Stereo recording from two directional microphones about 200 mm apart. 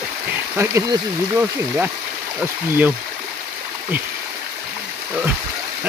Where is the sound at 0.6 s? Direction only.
15° right (ahead or behind).